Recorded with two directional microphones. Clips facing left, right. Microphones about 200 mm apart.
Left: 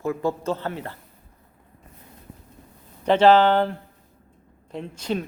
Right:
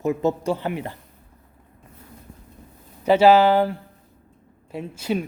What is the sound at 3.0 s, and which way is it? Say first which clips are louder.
Speech: right 1 dB; 10° right (ahead or behind).